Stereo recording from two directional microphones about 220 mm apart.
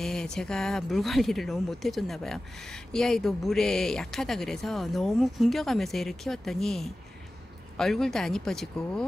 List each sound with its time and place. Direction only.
0.0 s speech: 5° left (ahead or behind)